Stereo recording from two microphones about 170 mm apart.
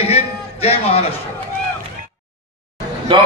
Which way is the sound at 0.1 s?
35° left (ahead or behind).